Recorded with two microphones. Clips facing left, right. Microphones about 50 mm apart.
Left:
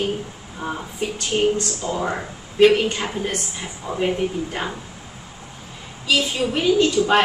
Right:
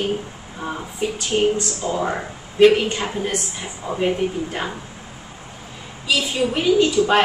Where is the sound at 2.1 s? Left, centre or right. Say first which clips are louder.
Right 1 dB; centre.